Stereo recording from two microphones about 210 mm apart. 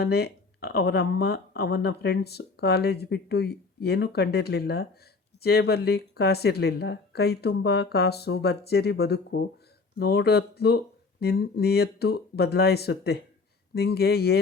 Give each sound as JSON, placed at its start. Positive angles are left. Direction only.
{"t": 0.0, "sound": "speech", "side_deg": 50}